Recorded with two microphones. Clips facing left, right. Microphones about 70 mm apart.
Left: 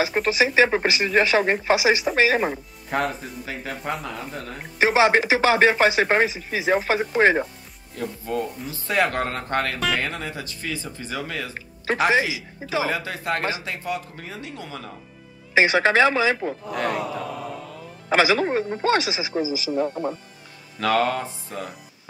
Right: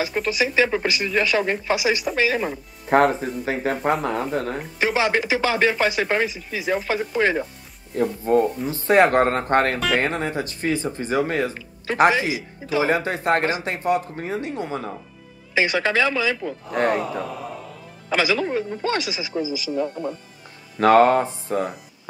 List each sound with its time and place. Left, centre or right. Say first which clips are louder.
0.3 s speech: left 2 dB; left
3.1 s speech: right 8 dB; right
4.7 s speech: left 4 dB; left
6.7 s speech: left 2 dB; left
7.9 s speech: right 9 dB; right
12.8 s speech: right 5 dB; right
15.5 s speech: left 3 dB; left
16.7 s speech: right 6 dB; right
17.0 s a man's voice: right 1 dB; centre
18.1 s speech: left 2 dB; left
19.9 s a man's voice: left 1 dB; centre
20.8 s speech: right 7 dB; right